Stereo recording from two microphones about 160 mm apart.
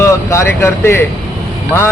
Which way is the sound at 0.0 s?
15° left (ahead or behind).